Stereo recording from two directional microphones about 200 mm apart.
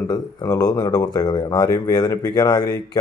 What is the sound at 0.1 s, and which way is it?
Speech, 20° left (ahead or behind).